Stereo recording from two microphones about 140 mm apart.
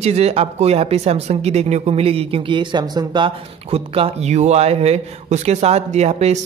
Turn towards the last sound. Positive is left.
turn(degrees=-50)  # may be behind; listen again after turning